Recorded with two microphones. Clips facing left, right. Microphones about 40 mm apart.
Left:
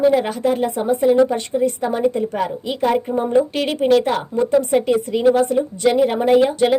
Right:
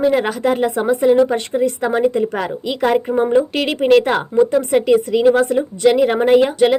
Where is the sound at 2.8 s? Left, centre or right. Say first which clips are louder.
Right 2 dB; right.